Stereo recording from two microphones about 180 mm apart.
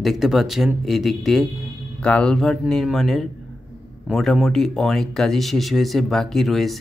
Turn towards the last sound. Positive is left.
turn(degrees=0)  # may be behind; listen again after turning